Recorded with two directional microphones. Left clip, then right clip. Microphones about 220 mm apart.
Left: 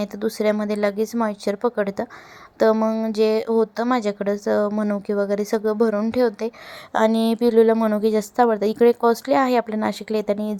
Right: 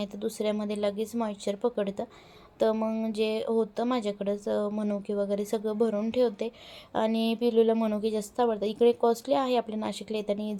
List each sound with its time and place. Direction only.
0.0 s speech: 25° left (ahead or behind)